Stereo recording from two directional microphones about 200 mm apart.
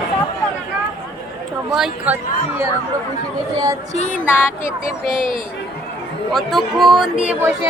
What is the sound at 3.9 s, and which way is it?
Music, 35° left (ahead or behind).